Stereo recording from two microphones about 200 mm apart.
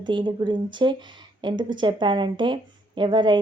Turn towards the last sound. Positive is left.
turn(degrees=-25)  # may be behind; listen again after turning